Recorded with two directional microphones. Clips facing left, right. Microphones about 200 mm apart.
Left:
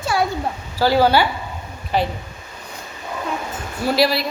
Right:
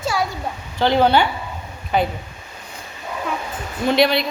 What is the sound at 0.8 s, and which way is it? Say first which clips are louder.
Speech: even; 5° left (ahead or behind).